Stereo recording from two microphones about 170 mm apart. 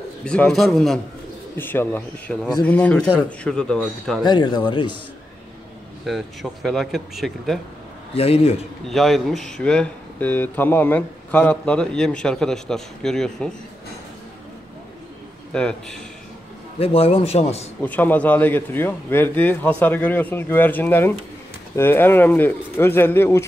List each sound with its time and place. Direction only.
0.2 s speech: 5° left (ahead or behind)
1.6 s a man's voice: 10° left (ahead or behind)
4.2 s speech: 25° left (ahead or behind)
6.0 s speech: centre (ahead or behind)
8.1 s a man's voice: 35° left (ahead or behind)
8.8 s speech: centre (ahead or behind)
15.5 s speech: 5° left (ahead or behind)
16.8 s a man's voice: 35° left (ahead or behind)
17.8 s a man's voice: 10° left (ahead or behind)